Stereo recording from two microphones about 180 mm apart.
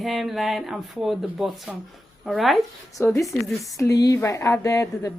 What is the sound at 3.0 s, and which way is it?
A woman's voice, 15° left (ahead or behind).